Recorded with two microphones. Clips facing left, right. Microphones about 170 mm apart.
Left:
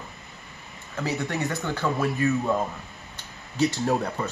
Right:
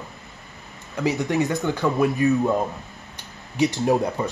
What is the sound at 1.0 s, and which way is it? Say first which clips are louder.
Speech: right 6 dB; 15° right (ahead or behind).